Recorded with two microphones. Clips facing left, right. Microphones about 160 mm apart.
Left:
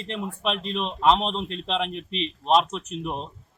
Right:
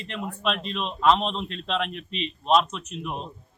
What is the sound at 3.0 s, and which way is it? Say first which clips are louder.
Speech: left 1 dB; 35° left (ahead or behind).